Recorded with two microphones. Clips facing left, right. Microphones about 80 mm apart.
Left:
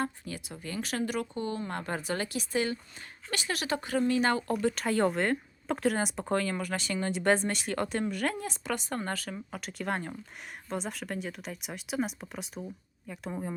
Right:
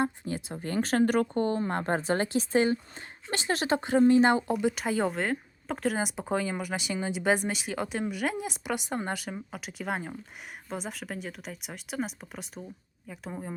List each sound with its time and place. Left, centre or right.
0.0 s speech: right
9.5 s speech: centre